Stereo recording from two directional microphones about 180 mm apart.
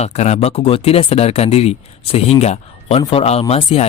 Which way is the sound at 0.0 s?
35° left (ahead or behind).